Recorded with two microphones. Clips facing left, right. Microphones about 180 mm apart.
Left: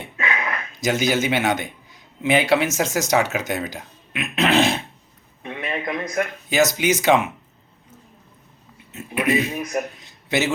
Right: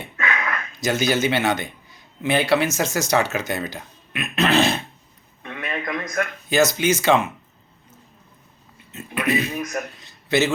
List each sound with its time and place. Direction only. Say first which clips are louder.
0.3 s a man's voice: even; 15° left (ahead or behind)
8.9 s a man's voice: left 2 dB; 15° left (ahead or behind)